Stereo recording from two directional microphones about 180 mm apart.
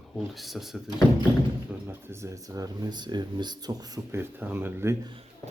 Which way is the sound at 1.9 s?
15° right (ahead or behind).